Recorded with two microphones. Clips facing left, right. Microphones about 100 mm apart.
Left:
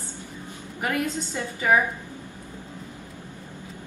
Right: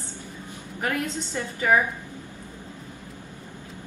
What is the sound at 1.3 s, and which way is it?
Dishes, 10° left (ahead or behind).